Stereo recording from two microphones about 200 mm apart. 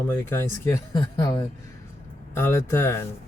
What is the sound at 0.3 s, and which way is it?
A man's voice, 15° left (ahead or behind).